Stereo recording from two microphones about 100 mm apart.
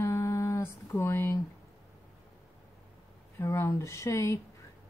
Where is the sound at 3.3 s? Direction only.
30° left (ahead or behind).